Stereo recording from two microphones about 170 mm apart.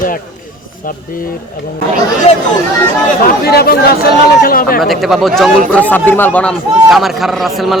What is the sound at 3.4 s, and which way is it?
Speech, 65° left (ahead or behind).